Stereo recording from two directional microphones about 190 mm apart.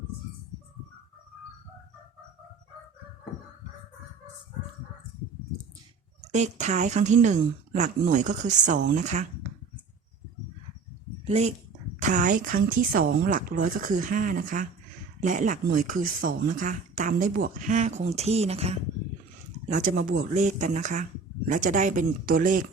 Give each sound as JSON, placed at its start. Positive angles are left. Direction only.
{"t": 6.3, "sound": "speech", "side_deg": -35}
{"t": 11.3, "sound": "speech", "side_deg": -35}